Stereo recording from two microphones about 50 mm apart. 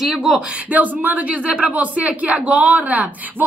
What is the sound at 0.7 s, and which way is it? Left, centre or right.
A woman's voice, right.